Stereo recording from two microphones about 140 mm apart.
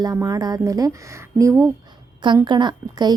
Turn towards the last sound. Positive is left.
turn(degrees=-30)  # may be behind; listen again after turning